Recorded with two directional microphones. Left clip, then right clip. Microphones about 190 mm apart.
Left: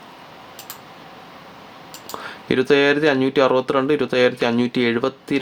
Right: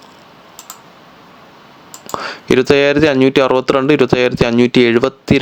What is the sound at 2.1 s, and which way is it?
Speech, 40° right (ahead or behind).